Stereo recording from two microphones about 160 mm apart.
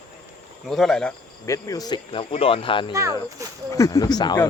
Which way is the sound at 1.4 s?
20° left (ahead or behind).